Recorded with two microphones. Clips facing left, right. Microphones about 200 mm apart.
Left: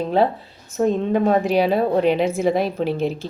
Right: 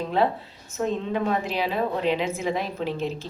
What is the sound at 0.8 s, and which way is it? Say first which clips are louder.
Speech: left 7 dB; 45° left (ahead or behind).